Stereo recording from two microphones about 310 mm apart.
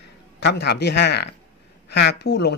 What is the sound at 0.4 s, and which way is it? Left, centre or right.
Speech, left.